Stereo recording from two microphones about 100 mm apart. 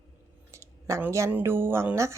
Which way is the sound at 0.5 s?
30° right (ahead or behind).